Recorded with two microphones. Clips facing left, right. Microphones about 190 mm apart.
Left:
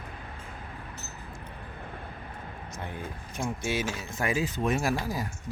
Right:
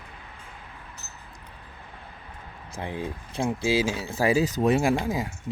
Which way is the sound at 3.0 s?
30° right (ahead or behind).